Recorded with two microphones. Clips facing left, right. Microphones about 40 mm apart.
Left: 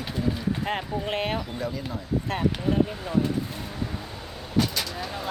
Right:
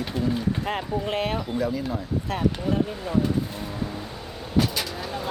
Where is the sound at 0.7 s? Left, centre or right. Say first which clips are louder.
Right 2 dB; left.